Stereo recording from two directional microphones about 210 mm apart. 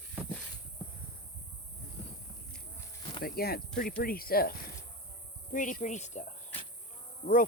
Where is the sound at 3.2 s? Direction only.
45° left (ahead or behind).